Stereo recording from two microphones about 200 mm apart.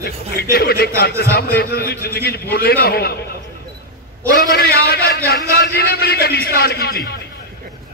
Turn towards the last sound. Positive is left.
turn(degrees=50)  # may be behind; listen again after turning